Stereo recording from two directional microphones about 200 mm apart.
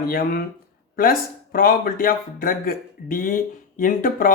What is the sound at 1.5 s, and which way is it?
Speech, 45° left (ahead or behind).